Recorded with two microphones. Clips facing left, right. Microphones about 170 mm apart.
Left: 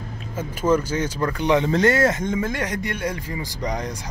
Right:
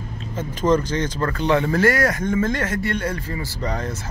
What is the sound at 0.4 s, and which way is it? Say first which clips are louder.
Speech: right 1 dB; 10° left (ahead or behind).